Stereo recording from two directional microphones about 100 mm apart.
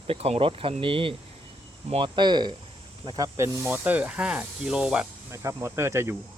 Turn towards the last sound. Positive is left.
turn(degrees=-25)  # may be behind; listen again after turning